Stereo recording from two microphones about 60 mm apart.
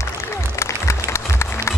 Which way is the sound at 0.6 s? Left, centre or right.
Left.